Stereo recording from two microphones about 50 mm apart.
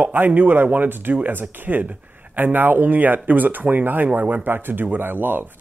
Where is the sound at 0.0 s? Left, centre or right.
Right.